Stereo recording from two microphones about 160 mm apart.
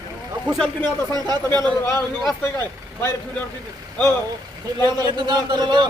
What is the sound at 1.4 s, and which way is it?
Speech, 15° left (ahead or behind).